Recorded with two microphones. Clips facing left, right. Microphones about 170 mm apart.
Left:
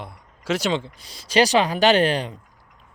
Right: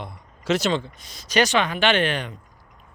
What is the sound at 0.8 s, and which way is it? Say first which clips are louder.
Speech: even; 30° left (ahead or behind).